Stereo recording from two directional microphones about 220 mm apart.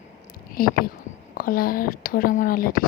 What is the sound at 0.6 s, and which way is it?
Speech, 40° left (ahead or behind).